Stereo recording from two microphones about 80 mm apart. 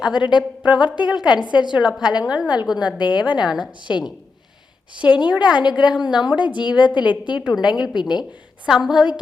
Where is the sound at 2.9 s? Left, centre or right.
Left.